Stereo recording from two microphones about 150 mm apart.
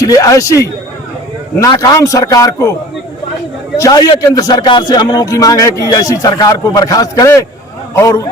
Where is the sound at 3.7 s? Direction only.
20° left (ahead or behind).